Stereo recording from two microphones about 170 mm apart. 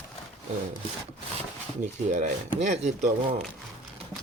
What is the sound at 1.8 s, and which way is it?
Speech, 50° right (ahead or behind).